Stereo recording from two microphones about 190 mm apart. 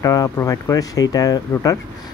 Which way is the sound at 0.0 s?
20° left (ahead or behind).